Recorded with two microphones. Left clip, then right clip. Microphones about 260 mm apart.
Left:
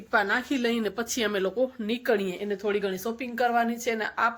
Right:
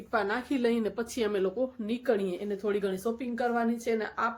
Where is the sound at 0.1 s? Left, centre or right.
Centre.